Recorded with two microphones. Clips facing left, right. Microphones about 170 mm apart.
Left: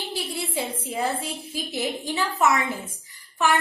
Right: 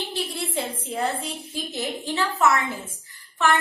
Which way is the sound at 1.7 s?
15° left (ahead or behind).